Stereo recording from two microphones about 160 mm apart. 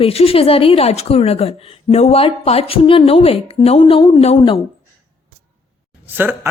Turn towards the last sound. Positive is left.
turn(degrees=-10)  # may be behind; listen again after turning